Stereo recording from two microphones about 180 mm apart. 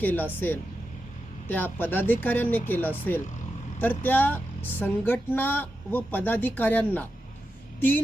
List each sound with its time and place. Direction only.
0.0 s speech: 10° left (ahead or behind)